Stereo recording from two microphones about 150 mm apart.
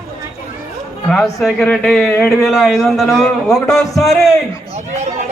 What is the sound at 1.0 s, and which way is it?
A man's voice, centre (ahead or behind).